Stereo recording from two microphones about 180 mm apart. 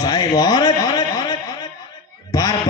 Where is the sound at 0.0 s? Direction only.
20° left (ahead or behind).